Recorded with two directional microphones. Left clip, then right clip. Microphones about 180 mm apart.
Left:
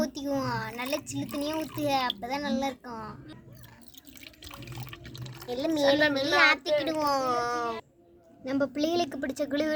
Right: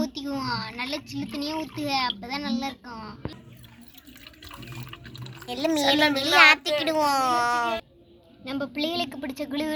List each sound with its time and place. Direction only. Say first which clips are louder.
0.0 s a sound: even; 55° left (ahead or behind)
0.9 s a woman's voice: even; 60° left (ahead or behind)
4.2 s water: right 2 dB; 30° left (ahead or behind)
5.5 s a child's voice: right 2 dB; centre (ahead or behind)
8.4 s a woman's voice: left 1 dB; 50° left (ahead or behind)